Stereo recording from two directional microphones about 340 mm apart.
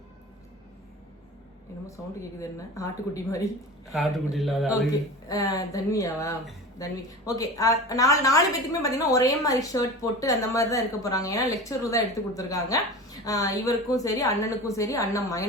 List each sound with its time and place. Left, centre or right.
2.4 s a woman's voice: centre
3.9 s a man's voice: centre